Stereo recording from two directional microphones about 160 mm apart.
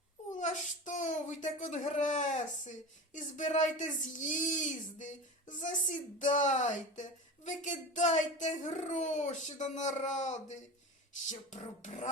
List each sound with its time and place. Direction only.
0.3 s speech: 50° left (ahead or behind)